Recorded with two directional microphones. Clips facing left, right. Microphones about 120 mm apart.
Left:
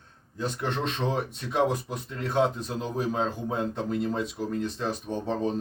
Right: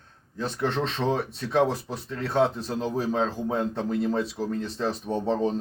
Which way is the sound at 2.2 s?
30° right (ahead or behind).